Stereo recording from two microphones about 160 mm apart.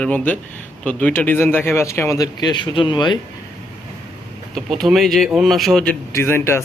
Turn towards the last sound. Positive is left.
turn(degrees=15)  # may be behind; listen again after turning